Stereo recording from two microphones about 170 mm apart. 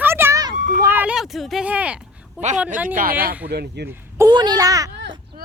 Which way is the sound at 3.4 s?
70° right (ahead or behind).